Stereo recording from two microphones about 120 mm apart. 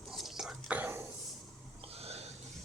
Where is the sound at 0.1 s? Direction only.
5° right (ahead or behind).